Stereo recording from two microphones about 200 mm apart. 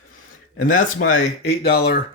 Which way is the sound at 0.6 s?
40° left (ahead or behind).